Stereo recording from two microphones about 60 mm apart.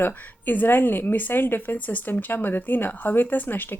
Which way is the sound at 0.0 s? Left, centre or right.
Left.